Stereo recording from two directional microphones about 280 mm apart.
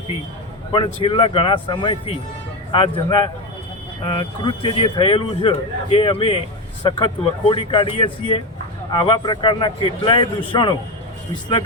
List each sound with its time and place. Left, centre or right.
1.0 s speech: centre